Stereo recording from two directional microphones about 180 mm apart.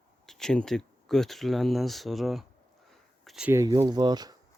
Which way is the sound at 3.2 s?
5° right (ahead or behind).